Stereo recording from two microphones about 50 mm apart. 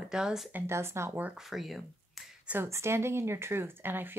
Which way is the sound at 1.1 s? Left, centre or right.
Right.